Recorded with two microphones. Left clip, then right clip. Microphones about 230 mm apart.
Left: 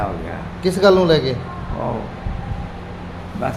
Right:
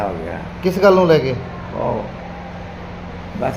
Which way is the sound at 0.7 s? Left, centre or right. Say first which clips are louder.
Right 1 dB; centre.